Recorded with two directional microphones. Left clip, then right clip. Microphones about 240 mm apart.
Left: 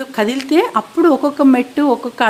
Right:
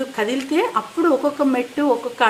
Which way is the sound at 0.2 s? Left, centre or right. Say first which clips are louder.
Left 6 dB; left.